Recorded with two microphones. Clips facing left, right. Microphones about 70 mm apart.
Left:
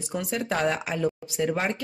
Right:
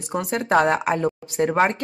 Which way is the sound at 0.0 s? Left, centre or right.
Right.